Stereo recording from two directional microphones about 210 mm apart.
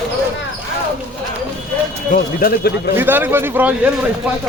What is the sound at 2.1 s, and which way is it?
Speech, 45° left (ahead or behind).